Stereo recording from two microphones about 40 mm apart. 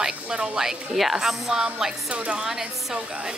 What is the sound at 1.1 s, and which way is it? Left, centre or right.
Speech, centre.